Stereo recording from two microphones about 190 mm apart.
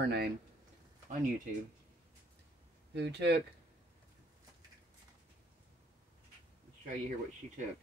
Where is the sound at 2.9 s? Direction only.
60° right (ahead or behind).